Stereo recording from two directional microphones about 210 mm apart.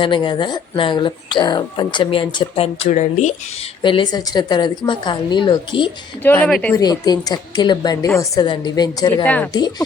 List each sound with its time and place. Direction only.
0.0 s speech: 20° left (ahead or behind)
3.8 s speech: 20° left (ahead or behind)
6.2 s speech: 10° left (ahead or behind)
6.8 s speech: 20° left (ahead or behind)
9.2 s speech: 5° left (ahead or behind)
9.5 s speech: 20° left (ahead or behind)